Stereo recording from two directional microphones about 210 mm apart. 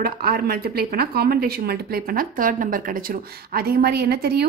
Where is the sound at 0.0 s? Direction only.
45° right (ahead or behind).